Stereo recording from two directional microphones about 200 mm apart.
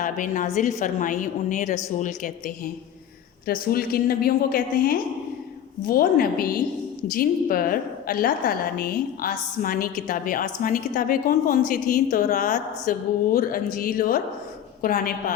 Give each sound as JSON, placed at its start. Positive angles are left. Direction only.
{"t": 0.0, "sound": "a woman's voice", "side_deg": 40}
{"t": 3.4, "sound": "a woman's voice", "side_deg": 50}